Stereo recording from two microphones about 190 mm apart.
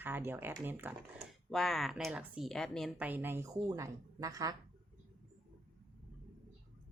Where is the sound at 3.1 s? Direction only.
10° right (ahead or behind).